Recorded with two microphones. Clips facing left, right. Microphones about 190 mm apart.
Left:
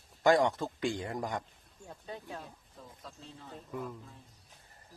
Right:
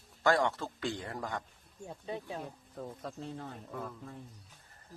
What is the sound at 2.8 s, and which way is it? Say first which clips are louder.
Speech: right 9 dB; 60° right (ahead or behind).